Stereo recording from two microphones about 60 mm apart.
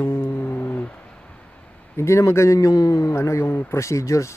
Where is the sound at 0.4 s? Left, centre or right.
Left.